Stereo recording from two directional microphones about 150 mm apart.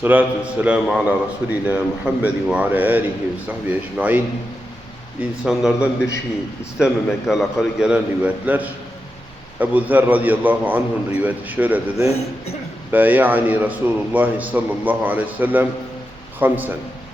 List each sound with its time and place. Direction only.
0.0 s a man's voice: 10° right (ahead or behind)
5.5 s a man's voice: 5° right (ahead or behind)
11.9 s a man's voice: 45° left (ahead or behind)
12.9 s a man's voice: 10° right (ahead or behind)